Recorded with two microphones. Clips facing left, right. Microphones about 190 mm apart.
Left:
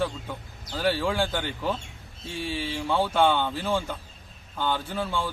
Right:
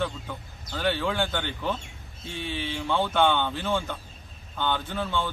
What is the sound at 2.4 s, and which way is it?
Speech, 35° left (ahead or behind).